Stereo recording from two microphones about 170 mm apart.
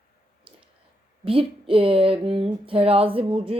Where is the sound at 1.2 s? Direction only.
30° right (ahead or behind).